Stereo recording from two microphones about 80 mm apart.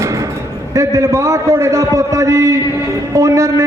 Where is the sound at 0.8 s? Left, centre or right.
Right.